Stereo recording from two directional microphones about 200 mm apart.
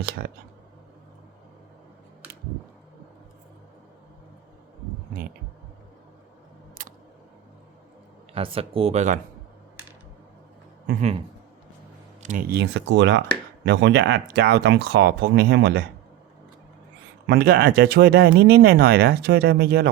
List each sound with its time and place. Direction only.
6.8 s camera: 40° right (ahead or behind)
8.3 s speech: 25° right (ahead or behind)
12.2 s speech: 40° right (ahead or behind)
17.2 s speech: 50° right (ahead or behind)